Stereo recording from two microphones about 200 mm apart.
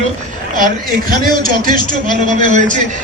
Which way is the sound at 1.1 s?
45° right (ahead or behind).